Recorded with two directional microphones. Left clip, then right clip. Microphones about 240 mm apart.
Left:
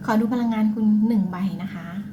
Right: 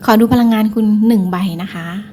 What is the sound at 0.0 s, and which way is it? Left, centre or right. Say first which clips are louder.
A woman's voice: right 12 dB; right.